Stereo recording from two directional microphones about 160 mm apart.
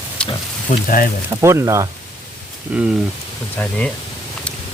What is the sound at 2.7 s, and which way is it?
Speech, 5° right (ahead or behind).